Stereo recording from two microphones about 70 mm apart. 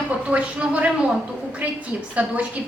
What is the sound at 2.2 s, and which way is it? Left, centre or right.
Speech, centre.